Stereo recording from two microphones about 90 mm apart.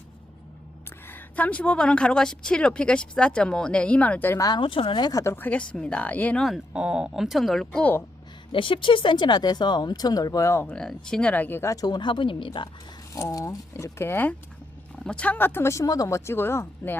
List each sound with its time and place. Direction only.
1.0 s a woman's voice: 20° left (ahead or behind)
4.4 s speech: 45° left (ahead or behind)
4.6 s speech: 75° left (ahead or behind)
5.2 s speech: 30° left (ahead or behind)
5.5 s a woman's voice: 15° left (ahead or behind)
6.7 s speech: 10° right (ahead or behind)
7.8 s speech: 20° left (ahead or behind)
8.5 s speech: 70° left (ahead or behind); by 10.7 s 30° left (ahead or behind)
10.8 s a woman's voice: 10° left (ahead or behind); by 11.7 s 25° left (ahead or behind)
11.7 s speech: 40° left (ahead or behind)
11.9 s speech: 65° left (ahead or behind)
13.1 s speech: 35° left (ahead or behind)
14.9 s speech: 10° left (ahead or behind)